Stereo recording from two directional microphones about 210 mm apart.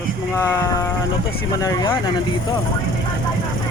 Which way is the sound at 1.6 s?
15° left (ahead or behind).